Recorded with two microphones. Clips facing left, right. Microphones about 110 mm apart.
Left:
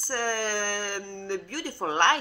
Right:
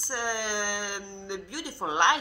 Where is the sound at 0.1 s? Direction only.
15° right (ahead or behind).